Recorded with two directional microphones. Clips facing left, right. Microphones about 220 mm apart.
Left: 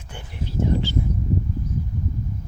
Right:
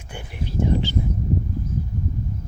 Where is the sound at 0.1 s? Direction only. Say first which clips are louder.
Right 1 dB; 15° right (ahead or behind).